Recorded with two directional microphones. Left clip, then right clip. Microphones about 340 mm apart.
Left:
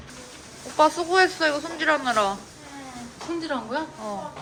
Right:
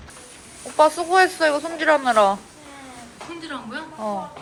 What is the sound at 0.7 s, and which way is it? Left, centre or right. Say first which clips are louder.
Speech: right 3 dB; centre.